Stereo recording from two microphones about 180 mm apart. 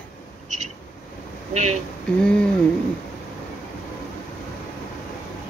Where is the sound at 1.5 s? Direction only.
40° right (ahead or behind).